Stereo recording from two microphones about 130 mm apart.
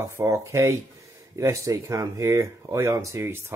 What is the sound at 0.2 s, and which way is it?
Speech, 25° right (ahead or behind).